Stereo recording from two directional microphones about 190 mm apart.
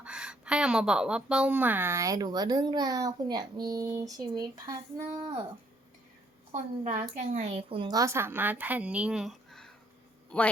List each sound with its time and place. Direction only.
0.0 s speech: 5° right (ahead or behind)
6.5 s a woman's voice: 35° right (ahead or behind); by 10.5 s 5° left (ahead or behind)